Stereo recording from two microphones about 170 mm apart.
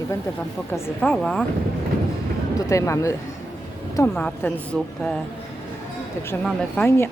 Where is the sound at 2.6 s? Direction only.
20° left (ahead or behind).